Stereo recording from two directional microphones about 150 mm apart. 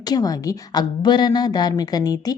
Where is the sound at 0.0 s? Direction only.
25° left (ahead or behind).